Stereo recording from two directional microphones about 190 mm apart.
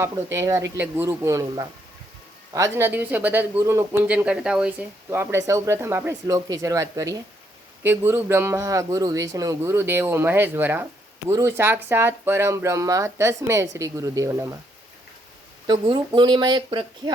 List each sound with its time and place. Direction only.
0.0 s speech: 15° right (ahead or behind)
15.6 s speech: 20° right (ahead or behind)